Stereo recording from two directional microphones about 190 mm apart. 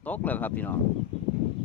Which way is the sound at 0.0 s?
10° left (ahead or behind).